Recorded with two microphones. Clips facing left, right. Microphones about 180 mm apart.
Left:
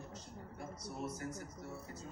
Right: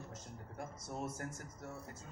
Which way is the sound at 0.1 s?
50° right (ahead or behind).